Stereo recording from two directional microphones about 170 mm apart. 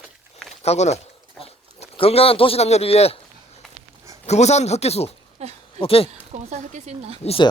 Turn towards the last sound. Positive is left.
turn(degrees=30)  # may be behind; listen again after turning